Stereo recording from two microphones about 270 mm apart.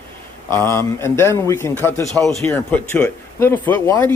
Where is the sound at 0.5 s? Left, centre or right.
Centre.